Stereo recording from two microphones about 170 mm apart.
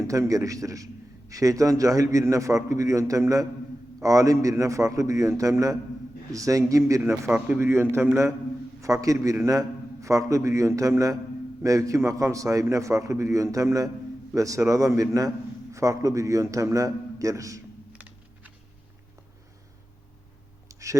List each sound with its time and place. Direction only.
0.1 s a man's voice: 20° right (ahead or behind)
7.1 s a man's voice: 5° right (ahead or behind)
20.7 s a sound: 20° right (ahead or behind)